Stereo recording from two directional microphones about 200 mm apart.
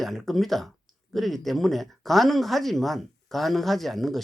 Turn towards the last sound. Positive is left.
turn(degrees=0)  # may be behind; listen again after turning